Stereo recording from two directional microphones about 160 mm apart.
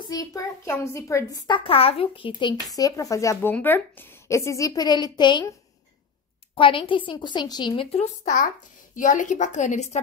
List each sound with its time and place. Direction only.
0.1 s a woman's voice: 20° left (ahead or behind)
1.6 s a woman's voice: 35° left (ahead or behind)
6.5 s a woman's voice: 30° left (ahead or behind)
8.9 s a woman's voice: 50° left (ahead or behind)